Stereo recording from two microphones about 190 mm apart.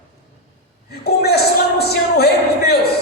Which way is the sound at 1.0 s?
55° left (ahead or behind).